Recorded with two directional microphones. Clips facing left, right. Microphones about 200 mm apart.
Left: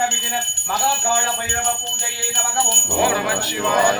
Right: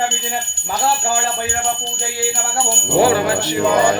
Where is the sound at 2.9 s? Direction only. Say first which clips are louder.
Right 6 dB; 30° right (ahead or behind).